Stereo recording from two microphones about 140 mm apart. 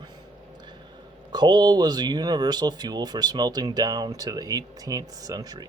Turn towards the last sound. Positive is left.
turn(degrees=-30)  # may be behind; listen again after turning